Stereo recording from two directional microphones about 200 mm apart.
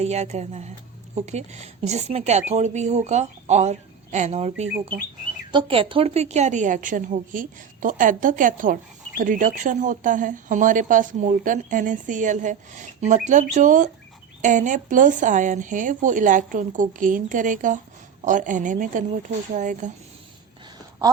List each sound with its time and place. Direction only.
0.0 s a woman's voice: 35° right (ahead or behind)